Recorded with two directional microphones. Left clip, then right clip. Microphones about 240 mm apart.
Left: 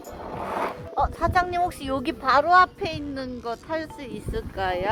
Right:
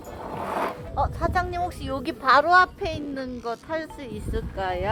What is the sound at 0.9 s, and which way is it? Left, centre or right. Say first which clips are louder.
Speech: left 3 dB; centre.